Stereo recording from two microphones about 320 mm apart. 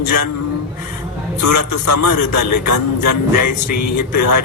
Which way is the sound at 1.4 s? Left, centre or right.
Left.